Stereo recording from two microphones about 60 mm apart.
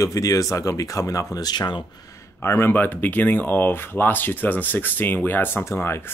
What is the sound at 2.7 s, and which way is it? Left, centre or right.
Speech, left.